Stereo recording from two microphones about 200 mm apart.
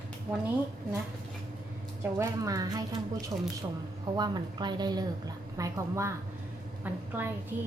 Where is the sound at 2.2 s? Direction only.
15° right (ahead or behind).